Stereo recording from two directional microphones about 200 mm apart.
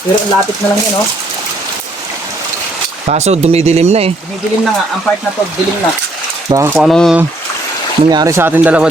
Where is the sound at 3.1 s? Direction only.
35° right (ahead or behind).